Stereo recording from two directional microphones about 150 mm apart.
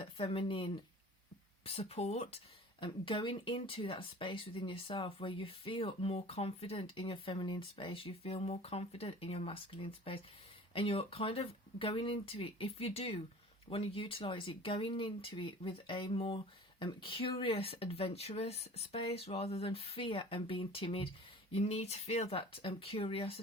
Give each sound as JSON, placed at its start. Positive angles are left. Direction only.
{"t": 0.0, "sound": "speech", "side_deg": 35}